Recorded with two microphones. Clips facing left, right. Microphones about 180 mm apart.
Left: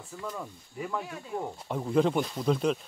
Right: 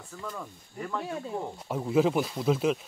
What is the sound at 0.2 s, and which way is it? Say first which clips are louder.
Speech: left 1 dB; 10° left (ahead or behind).